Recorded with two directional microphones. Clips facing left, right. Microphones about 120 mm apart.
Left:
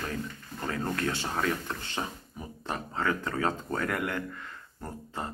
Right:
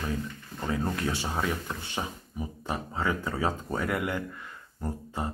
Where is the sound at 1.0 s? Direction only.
15° right (ahead or behind).